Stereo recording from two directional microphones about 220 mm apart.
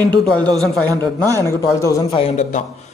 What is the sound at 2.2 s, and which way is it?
Speech, 30° left (ahead or behind).